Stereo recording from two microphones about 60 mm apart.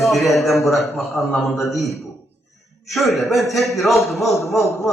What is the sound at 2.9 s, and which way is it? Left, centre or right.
Speech, centre.